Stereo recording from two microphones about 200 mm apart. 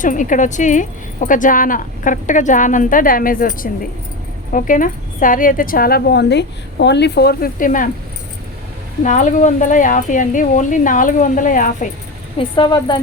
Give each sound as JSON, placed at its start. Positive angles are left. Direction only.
{"t": 0.0, "sound": "a woman's voice", "side_deg": 40}
{"t": 9.0, "sound": "speech", "side_deg": 40}
{"t": 12.4, "sound": "a woman's voice", "side_deg": 25}